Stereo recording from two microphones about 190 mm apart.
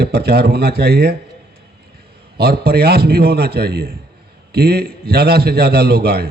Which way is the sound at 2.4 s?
55° right (ahead or behind).